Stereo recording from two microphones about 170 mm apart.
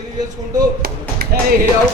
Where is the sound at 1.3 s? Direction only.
65° right (ahead or behind).